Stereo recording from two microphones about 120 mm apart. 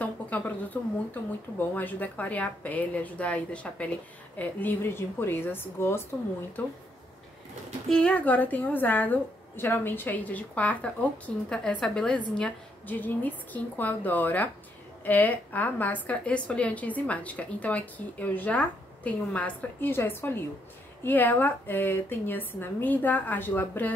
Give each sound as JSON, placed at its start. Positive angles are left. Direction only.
{"t": 0.0, "sound": "a sound", "side_deg": 15}
{"t": 1.6, "sound": "a woman's voice", "side_deg": 15}
{"t": 7.9, "sound": "a woman's voice", "side_deg": 10}